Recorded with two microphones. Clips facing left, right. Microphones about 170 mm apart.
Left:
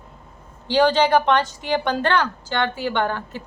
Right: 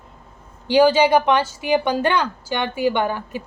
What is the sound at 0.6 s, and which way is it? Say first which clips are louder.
A woman's voice: right 3 dB; 10° right (ahead or behind).